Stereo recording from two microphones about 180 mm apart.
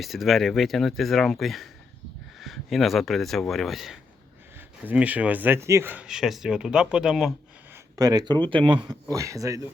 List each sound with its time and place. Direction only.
0.0 s speech: centre (ahead or behind)
7.9 s speech: 20° right (ahead or behind)